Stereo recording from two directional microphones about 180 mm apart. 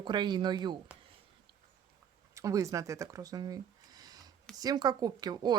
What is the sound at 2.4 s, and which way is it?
A woman's voice, 15° right (ahead or behind).